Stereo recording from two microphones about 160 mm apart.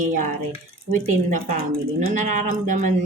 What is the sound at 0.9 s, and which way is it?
Speech, 65° right (ahead or behind).